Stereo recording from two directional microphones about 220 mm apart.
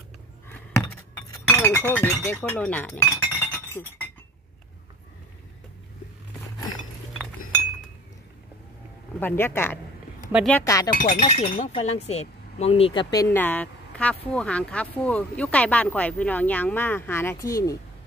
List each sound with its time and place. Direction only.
1.3 s chink: 10° left (ahead or behind)
2.2 s speech: 5° left (ahead or behind)
3.3 s chink: 10° left (ahead or behind)
9.2 s speech: 10° left (ahead or behind)
10.6 s speech: 15° left (ahead or behind)
10.9 s speech: 35° left (ahead or behind); by 17.7 s 15° left (ahead or behind)